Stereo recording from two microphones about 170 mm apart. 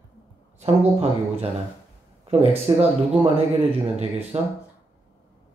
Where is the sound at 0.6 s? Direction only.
35° right (ahead or behind).